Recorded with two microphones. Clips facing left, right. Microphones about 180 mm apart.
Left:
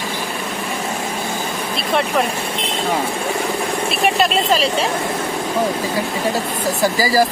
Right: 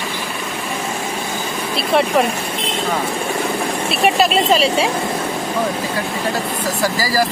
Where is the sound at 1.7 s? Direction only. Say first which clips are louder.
Right 3 dB; centre (ahead or behind).